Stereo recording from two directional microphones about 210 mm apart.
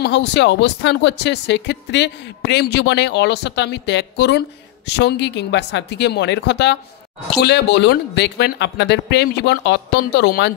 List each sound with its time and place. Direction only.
0.0 s speech: 55° left (ahead or behind)